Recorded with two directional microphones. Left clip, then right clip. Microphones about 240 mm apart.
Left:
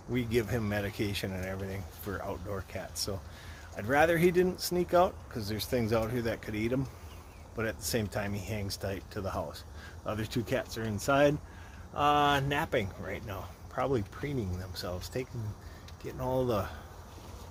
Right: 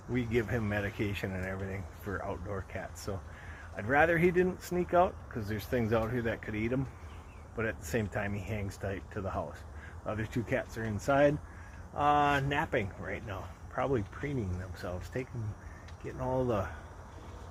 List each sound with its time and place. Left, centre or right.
0.1 s speech: centre